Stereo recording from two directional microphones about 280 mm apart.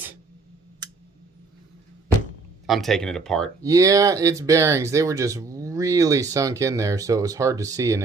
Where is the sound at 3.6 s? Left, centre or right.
Centre.